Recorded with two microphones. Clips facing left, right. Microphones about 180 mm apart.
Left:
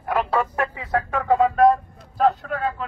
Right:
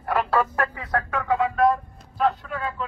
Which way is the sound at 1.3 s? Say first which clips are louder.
Left 4 dB; 45° left (ahead or behind).